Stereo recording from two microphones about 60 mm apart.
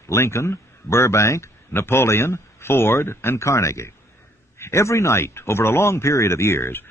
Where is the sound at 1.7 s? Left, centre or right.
Left.